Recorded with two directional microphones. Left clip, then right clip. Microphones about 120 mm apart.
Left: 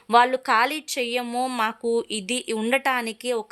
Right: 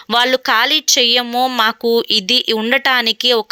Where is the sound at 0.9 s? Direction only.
25° right (ahead or behind).